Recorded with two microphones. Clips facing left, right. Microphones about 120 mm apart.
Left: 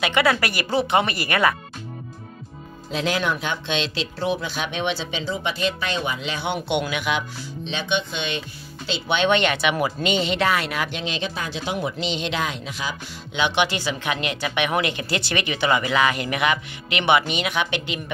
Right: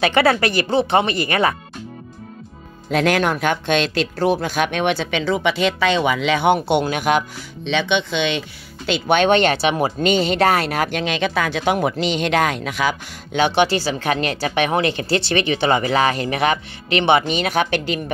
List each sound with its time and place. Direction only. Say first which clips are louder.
0.0 s speech: right 5 dB; 35° right (ahead or behind)
2.9 s speech: right 6 dB; 60° right (ahead or behind)
6.5 s speech: right 7 dB; 40° right (ahead or behind)
7.6 s speech: right 6 dB; 75° right (ahead or behind)
8.8 s speech: right 5 dB; 55° right (ahead or behind)
13.4 s speech: right 5 dB; 35° right (ahead or behind)